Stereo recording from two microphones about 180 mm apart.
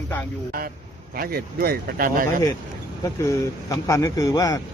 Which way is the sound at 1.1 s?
55° right (ahead or behind).